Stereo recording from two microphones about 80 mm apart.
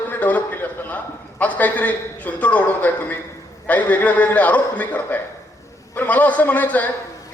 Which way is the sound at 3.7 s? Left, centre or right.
Centre.